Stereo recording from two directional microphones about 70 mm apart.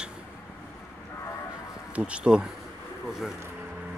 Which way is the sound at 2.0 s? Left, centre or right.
Centre.